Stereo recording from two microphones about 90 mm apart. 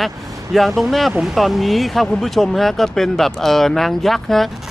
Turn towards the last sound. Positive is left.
turn(degrees=0)  # may be behind; listen again after turning